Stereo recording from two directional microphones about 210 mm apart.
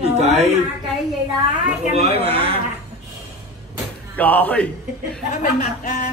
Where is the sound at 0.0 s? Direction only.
30° right (ahead or behind).